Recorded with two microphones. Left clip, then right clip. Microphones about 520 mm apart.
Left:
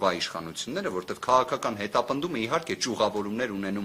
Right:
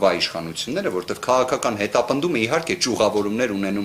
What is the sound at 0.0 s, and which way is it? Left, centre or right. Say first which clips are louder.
Speech: right 8 dB; left.